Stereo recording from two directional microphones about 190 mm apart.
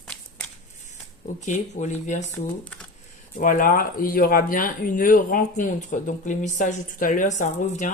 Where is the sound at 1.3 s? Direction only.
40° left (ahead or behind).